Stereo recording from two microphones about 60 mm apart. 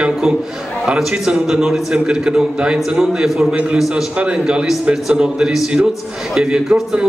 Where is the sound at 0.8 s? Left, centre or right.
Centre.